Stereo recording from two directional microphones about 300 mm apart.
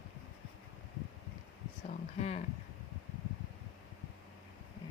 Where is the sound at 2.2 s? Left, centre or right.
Left.